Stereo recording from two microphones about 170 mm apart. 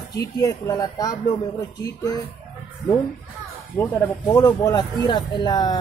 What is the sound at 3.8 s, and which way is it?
Speech, 20° left (ahead or behind).